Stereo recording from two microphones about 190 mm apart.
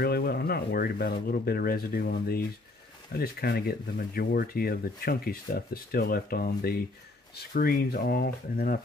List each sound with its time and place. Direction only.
0.0 s speech: 55° left (ahead or behind)